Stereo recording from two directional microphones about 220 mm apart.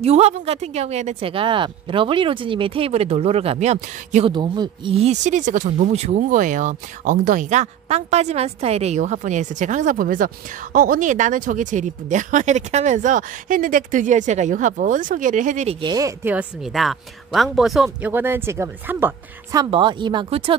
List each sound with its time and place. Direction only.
0.0 s a woman's voice: 30° right (ahead or behind)